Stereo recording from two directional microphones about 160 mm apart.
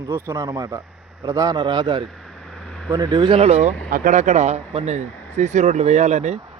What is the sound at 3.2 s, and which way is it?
Speech, 35° right (ahead or behind).